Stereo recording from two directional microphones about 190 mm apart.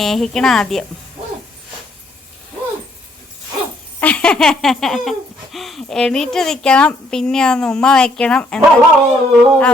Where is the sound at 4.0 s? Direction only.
5° left (ahead or behind).